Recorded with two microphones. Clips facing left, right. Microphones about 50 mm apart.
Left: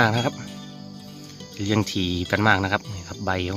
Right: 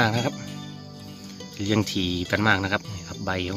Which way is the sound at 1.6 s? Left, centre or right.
Centre.